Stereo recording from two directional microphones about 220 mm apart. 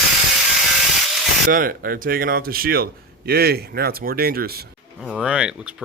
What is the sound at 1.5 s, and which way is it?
Speech, 40° right (ahead or behind).